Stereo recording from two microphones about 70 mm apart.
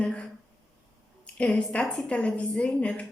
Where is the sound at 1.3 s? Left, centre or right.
Centre.